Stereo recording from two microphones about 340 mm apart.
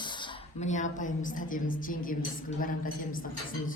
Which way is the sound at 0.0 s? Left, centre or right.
Centre.